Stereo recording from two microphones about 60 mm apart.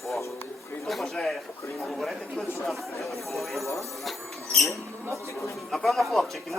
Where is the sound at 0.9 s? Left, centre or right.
Centre.